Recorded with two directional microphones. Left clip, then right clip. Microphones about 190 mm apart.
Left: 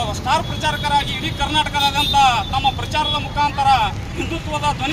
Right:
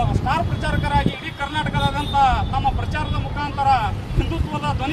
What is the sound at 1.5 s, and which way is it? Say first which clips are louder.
Speech: left 6 dB; 10° left (ahead or behind).